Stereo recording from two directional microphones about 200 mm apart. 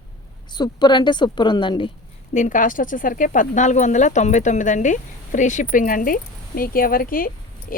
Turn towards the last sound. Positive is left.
turn(degrees=45)  # may be behind; listen again after turning